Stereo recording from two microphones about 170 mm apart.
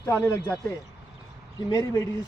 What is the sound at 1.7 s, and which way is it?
Speech, 20° left (ahead or behind).